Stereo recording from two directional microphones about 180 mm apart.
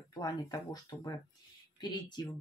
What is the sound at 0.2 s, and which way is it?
Speech, 20° left (ahead or behind).